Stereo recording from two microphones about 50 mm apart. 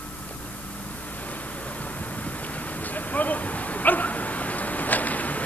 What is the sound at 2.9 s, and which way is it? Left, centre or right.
Bow-wow, left.